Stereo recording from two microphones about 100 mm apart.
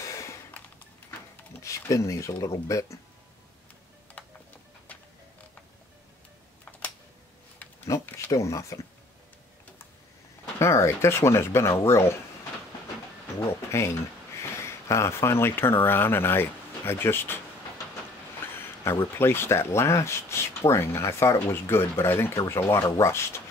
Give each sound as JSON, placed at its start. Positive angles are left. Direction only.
{"t": 0.0, "sound": "a sound", "side_deg": 30}
{"t": 1.6, "sound": "speech", "side_deg": 30}
{"t": 4.2, "sound": "music", "side_deg": 15}
{"t": 7.5, "sound": "a sound", "side_deg": 25}
{"t": 10.6, "sound": "speech", "side_deg": 30}
{"t": 13.7, "sound": "speech", "side_deg": 25}
{"t": 18.4, "sound": "speech", "side_deg": 25}